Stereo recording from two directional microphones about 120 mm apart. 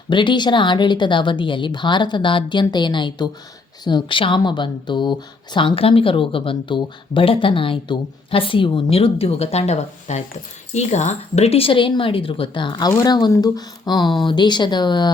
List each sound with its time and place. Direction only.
0.1 s speech: 40° left (ahead or behind)